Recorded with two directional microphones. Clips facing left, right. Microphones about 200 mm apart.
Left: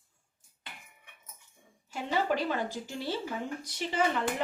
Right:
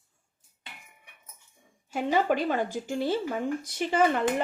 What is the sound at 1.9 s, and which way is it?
A woman's voice, 50° right (ahead or behind).